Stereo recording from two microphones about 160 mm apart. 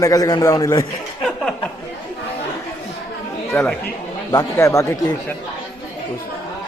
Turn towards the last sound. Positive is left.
turn(degrees=15)  # may be behind; listen again after turning